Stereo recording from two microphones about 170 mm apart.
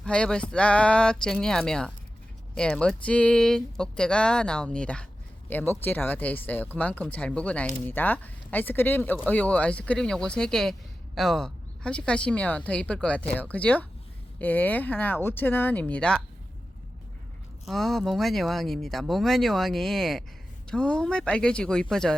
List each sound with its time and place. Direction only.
0.0 s speech: 5° left (ahead or behind)
17.7 s speech: centre (ahead or behind)